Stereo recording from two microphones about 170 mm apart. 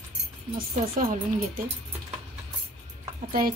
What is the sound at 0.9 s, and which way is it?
Speech, 55° right (ahead or behind).